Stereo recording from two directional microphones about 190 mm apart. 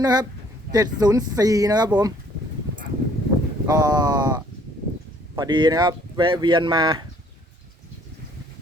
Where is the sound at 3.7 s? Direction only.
20° right (ahead or behind).